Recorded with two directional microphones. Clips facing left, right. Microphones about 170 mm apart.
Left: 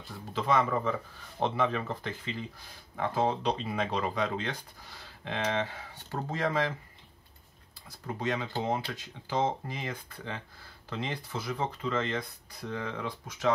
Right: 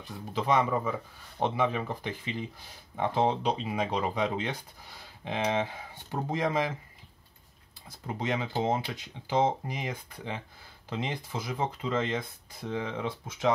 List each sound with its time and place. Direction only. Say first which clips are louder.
0.0 s speech: right 2 dB; 15° right (ahead or behind)
8.1 s speech: right 1 dB; 15° right (ahead or behind)